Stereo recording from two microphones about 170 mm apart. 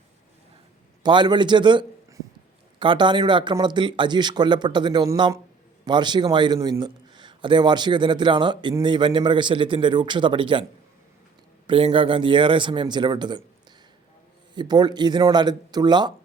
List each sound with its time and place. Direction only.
1.0 s a man's voice: 25° right (ahead or behind)
14.5 s a man's voice: 25° right (ahead or behind)